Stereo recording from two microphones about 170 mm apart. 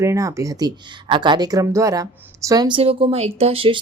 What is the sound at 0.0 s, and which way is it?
Speech, 20° right (ahead or behind).